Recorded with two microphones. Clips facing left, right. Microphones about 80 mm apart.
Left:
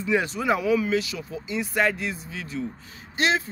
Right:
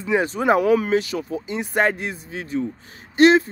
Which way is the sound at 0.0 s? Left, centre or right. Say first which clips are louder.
Right 4 dB; right.